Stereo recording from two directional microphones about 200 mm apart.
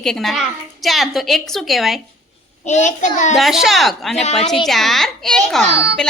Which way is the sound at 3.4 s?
Centre (ahead or behind).